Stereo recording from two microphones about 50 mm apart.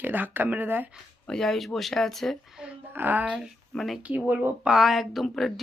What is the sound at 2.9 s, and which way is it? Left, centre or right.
Speech, right.